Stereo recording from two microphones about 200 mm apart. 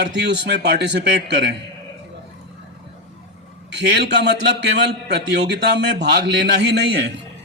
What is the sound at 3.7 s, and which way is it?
A man's voice, 60° right (ahead or behind).